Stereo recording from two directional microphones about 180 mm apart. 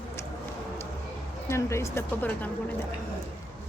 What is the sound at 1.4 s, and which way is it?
Speech, 15° left (ahead or behind).